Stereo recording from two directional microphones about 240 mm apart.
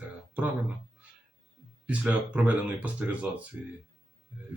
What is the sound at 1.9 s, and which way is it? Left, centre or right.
Speech, centre.